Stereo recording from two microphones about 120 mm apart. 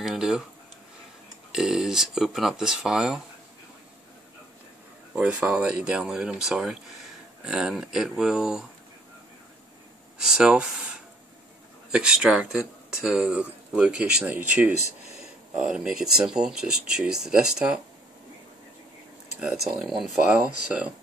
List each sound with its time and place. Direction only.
0.0 s speech: 5° right (ahead or behind)
1.5 s speech: 5° right (ahead or behind)
5.1 s speech: 10° right (ahead or behind)
10.1 s speech: 5° right (ahead or behind)
11.9 s speech: 5° right (ahead or behind)
14.7 s speech: 70° left (ahead or behind)
15.1 s speech: 5° right (ahead or behind)
19.4 s speech: centre (ahead or behind)